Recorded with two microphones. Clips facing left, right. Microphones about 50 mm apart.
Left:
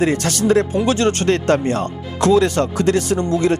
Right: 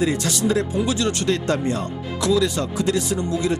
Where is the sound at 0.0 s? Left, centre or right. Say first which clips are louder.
Left 4 dB; left.